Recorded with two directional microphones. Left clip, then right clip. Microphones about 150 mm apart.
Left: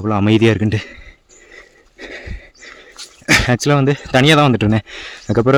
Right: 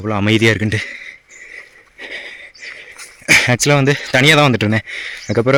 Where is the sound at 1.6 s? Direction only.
40° left (ahead or behind).